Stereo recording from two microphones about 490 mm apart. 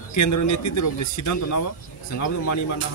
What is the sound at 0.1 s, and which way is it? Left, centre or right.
Speech, left.